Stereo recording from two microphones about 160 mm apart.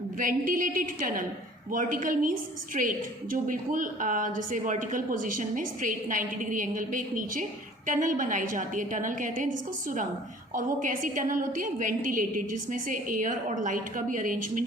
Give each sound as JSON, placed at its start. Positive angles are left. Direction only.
{"t": 0.2, "sound": "a woman's voice", "side_deg": -60}
{"t": 10.5, "sound": "a woman's voice", "side_deg": -55}